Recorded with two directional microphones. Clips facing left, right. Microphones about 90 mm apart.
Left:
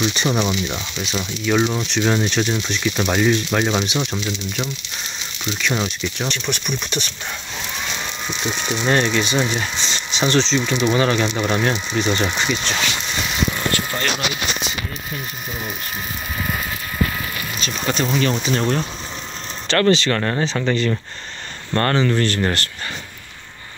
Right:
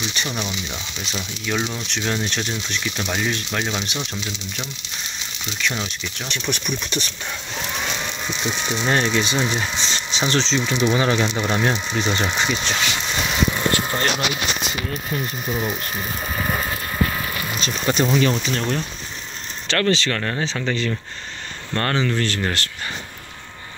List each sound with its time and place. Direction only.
0.1 s speech: 25° left (ahead or behind)
5.7 s speech: 20° left (ahead or behind)
6.6 s speech: 5° left (ahead or behind)
8.3 s speech: centre (ahead or behind)
13.6 s vehicle: 20° right (ahead or behind)
17.6 s speech: 20° right (ahead or behind)
18.0 s speech: 5° right (ahead or behind)
18.3 s speech: 10° left (ahead or behind)